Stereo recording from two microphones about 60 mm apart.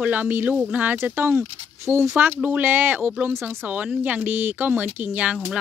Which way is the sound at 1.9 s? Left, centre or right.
Right.